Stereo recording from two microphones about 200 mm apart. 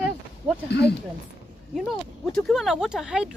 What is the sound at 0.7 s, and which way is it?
Speech, 55° left (ahead or behind).